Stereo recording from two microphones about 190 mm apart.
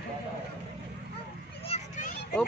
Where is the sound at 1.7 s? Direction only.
40° left (ahead or behind).